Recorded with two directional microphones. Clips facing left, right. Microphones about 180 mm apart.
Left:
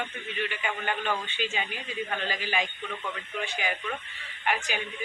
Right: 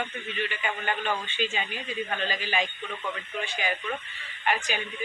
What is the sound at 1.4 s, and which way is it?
A woman's voice, 15° left (ahead or behind).